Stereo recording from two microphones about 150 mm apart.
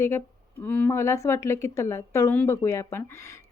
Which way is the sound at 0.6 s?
10° left (ahead or behind).